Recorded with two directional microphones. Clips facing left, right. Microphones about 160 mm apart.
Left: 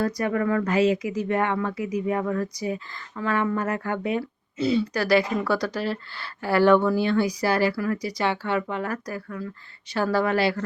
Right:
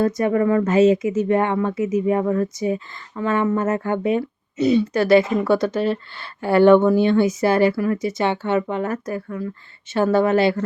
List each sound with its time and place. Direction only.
0.0 s speech: 25° right (ahead or behind)